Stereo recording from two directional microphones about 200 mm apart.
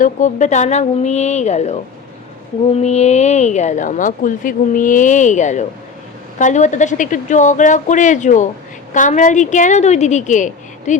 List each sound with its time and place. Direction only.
0.0 s a woman's voice: 40° left (ahead or behind)
2.8 s a woman's voice: 35° left (ahead or behind)